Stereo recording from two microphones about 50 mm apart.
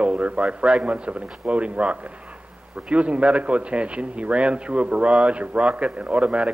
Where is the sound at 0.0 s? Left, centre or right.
Right.